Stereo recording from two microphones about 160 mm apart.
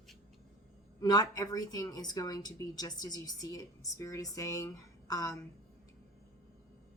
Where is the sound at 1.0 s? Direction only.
25° left (ahead or behind).